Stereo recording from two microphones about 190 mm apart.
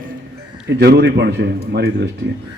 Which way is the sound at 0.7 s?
60° right (ahead or behind).